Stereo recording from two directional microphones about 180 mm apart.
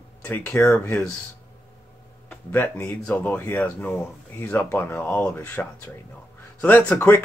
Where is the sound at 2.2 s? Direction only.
10° left (ahead or behind).